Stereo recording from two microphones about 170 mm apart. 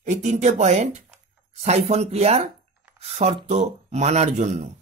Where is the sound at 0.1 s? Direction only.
45° right (ahead or behind).